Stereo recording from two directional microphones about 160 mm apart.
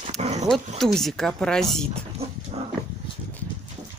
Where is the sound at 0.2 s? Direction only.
45° right (ahead or behind).